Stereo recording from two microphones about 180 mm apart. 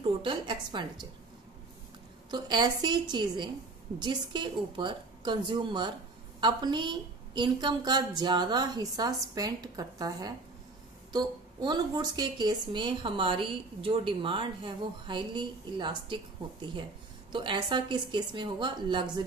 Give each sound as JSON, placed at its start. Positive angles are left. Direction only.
{"t": 0.2, "sound": "a woman's voice", "side_deg": -25}
{"t": 2.3, "sound": "a woman's voice", "side_deg": -25}
{"t": 17.3, "sound": "a woman's voice", "side_deg": -25}